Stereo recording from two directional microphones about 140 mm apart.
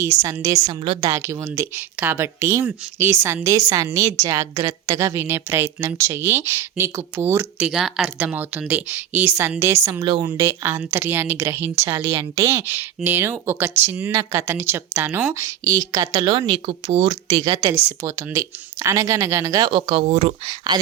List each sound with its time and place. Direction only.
0.0 s a woman's voice: 20° right (ahead or behind)
1.1 s a woman's voice: 20° right (ahead or behind)
7.7 s a woman's voice: 5° right (ahead or behind); by 16.2 s 25° right (ahead or behind)
16.5 s speech: 40° right (ahead or behind)
17.6 s a woman's voice: 25° right (ahead or behind); by 20.5 s 50° right (ahead or behind)